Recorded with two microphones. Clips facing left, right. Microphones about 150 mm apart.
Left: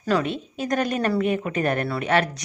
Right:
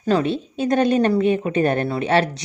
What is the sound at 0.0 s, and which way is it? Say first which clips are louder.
A woman's voice: right 4 dB; 25° right (ahead or behind).